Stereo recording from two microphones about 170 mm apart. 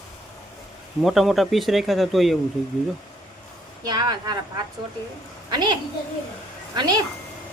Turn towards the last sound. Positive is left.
turn(degrees=-25)  # may be behind; listen again after turning